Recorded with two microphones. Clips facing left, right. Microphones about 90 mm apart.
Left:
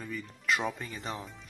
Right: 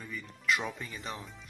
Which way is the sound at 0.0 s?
40° left (ahead or behind).